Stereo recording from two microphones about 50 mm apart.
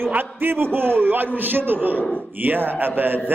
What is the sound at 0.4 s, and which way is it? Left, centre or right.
A man's voice, right.